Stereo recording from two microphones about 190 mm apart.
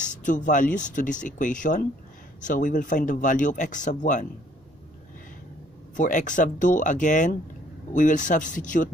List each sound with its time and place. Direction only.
0.0 s speech: 40° left (ahead or behind)
5.9 s speech: 40° left (ahead or behind)